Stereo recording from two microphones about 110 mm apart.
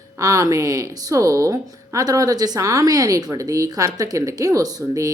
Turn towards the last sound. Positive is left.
turn(degrees=-30)  # may be behind; listen again after turning